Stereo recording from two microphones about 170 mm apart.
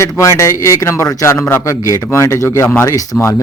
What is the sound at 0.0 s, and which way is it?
A man's voice, 15° left (ahead or behind).